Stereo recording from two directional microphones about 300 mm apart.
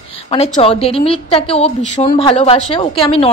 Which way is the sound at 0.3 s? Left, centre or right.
Centre.